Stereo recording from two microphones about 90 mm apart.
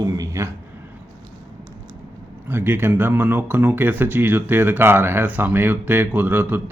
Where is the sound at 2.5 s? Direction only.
25° right (ahead or behind).